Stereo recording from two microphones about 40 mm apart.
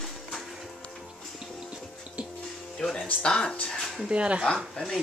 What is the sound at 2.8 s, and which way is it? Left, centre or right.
Music, centre.